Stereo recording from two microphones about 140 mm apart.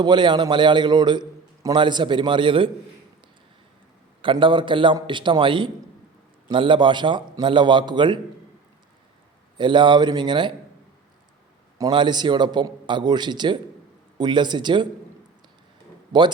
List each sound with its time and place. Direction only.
0.0 s a man's voice: 30° right (ahead or behind)
4.2 s a man's voice: 35° right (ahead or behind)
9.6 s a man's voice: 35° right (ahead or behind)
11.8 s a man's voice: 35° right (ahead or behind)